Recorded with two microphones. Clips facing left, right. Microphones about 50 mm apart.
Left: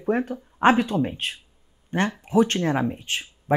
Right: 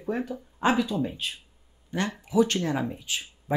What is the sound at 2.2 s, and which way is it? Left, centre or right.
Speech, left.